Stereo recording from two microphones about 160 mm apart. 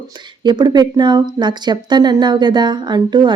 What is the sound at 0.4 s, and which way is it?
Speech, 25° right (ahead or behind).